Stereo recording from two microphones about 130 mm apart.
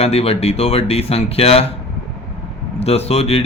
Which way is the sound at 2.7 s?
50° left (ahead or behind).